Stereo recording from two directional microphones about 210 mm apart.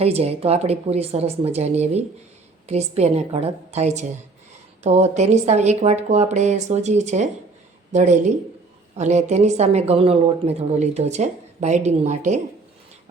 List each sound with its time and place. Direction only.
0.0 s speech: 30° right (ahead or behind)